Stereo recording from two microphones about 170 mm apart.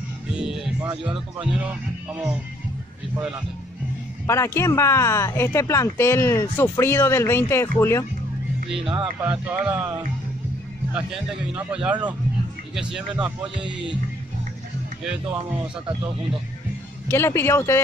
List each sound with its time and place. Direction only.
0.3 s music: 5° right (ahead or behind)
0.7 s speech: 25° right (ahead or behind)
1.1 s speech: 10° right (ahead or behind)
4.3 s speech: 15° left (ahead or behind)
8.7 s speech: 30° right (ahead or behind)
9.2 s speech: 10° right (ahead or behind)
11.0 s speech: 5° right (ahead or behind)
17.1 s speech: 15° left (ahead or behind)